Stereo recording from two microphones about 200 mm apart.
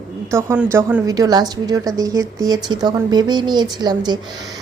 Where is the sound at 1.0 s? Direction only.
20° right (ahead or behind).